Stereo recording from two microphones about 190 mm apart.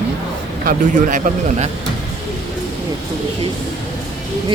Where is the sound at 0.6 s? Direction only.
40° right (ahead or behind).